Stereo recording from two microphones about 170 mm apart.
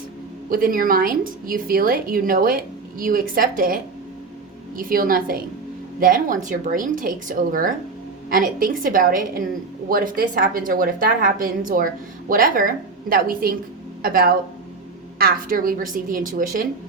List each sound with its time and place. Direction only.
0.5 s a woman's voice: 55° right (ahead or behind)
4.8 s a woman's voice: 55° right (ahead or behind)